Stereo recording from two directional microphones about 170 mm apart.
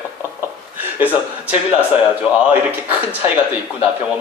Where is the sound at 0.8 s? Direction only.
10° right (ahead or behind).